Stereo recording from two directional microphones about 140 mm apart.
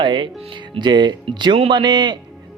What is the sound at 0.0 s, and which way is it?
Speech, 35° right (ahead or behind).